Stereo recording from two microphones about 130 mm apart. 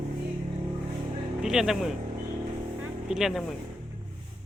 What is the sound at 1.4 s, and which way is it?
Speech, 5° right (ahead or behind).